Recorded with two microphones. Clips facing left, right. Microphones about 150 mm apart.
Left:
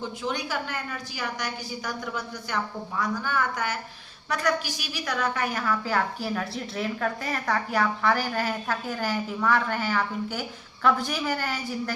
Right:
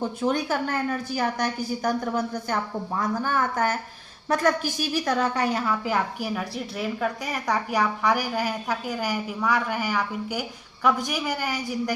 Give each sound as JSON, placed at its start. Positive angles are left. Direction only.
{"t": 0.0, "sound": "a woman's voice", "side_deg": -50}
{"t": 5.1, "sound": "a woman's voice", "side_deg": -30}